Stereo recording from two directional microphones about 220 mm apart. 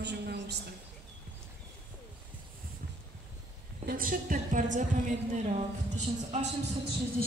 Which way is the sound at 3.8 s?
40° right (ahead or behind).